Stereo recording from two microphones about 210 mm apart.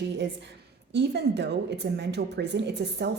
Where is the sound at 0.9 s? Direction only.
55° right (ahead or behind).